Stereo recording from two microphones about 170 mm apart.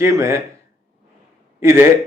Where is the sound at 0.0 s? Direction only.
15° right (ahead or behind).